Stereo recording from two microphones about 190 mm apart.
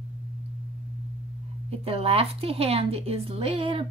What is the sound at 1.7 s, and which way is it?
A woman's voice, 30° right (ahead or behind).